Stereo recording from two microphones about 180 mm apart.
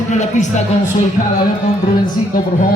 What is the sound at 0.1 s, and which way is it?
Speech, 40° left (ahead or behind).